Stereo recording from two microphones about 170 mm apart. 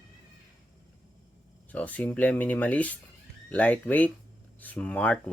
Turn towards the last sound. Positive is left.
turn(degrees=5)  # may be behind; listen again after turning